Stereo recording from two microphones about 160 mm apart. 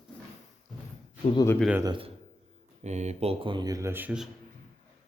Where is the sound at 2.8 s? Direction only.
45° right (ahead or behind); by 4.3 s 10° right (ahead or behind).